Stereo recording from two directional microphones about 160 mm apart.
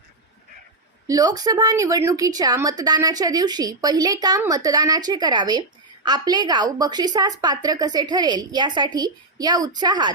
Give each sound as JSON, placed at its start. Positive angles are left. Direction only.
{"t": 1.0, "sound": "a woman's voice", "side_deg": -25}